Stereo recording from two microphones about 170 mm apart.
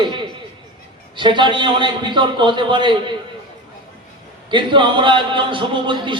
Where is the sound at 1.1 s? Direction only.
30° right (ahead or behind).